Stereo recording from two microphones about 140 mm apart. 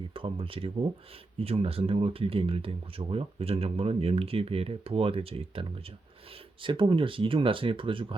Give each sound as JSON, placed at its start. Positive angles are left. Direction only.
{"t": 0.1, "sound": "speech", "side_deg": -40}